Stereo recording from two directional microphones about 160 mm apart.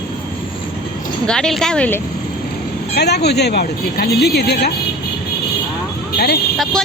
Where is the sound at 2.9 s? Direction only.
90° left.